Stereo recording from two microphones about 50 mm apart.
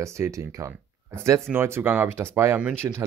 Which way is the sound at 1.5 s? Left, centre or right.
Centre.